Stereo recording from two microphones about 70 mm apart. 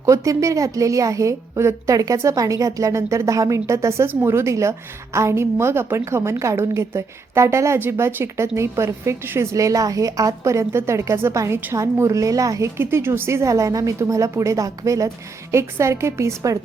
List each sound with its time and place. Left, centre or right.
0.0 s a woman's voice: right
9.5 s a woman's voice: right
12.8 s a woman's voice: right
15.5 s a woman's voice: right